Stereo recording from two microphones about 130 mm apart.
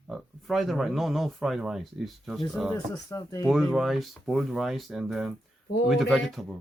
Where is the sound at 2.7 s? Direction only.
30° left (ahead or behind).